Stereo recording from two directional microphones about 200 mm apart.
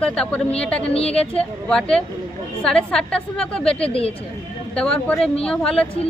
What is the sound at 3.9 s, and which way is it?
Speech, 30° left (ahead or behind).